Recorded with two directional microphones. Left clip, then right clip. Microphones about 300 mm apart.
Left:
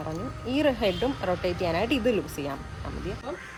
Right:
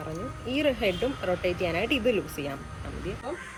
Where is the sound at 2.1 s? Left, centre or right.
Left.